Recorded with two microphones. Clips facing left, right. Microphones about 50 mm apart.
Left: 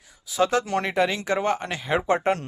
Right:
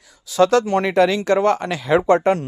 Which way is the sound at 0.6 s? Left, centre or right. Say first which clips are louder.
Right 6 dB; right.